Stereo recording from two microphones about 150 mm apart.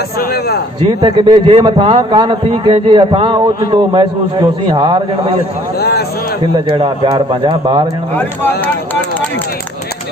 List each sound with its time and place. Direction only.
0.2 s a man's voice: 90° left
0.8 s a man's voice: 30° right (ahead or behind)
5.8 s a man's voice: 90° left
6.7 s a man's voice: 40° right (ahead or behind)
8.1 s speech: 10° left (ahead or behind)